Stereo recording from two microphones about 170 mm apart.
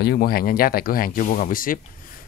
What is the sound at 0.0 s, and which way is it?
Speech, 65° left (ahead or behind).